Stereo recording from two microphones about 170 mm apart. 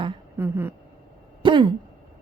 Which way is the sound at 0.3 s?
15° right (ahead or behind).